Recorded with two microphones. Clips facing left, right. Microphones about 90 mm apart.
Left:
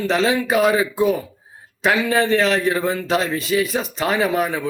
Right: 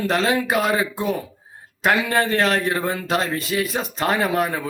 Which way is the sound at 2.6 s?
Centre (ahead or behind).